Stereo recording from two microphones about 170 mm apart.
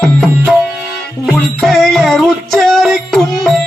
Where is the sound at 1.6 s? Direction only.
Centre (ahead or behind).